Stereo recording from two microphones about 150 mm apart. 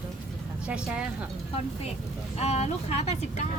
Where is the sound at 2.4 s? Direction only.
45° left (ahead or behind).